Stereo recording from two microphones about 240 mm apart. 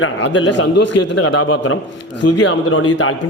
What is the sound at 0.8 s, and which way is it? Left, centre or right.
Speech, left.